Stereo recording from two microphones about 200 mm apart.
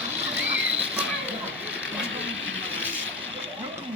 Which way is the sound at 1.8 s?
70° right (ahead or behind).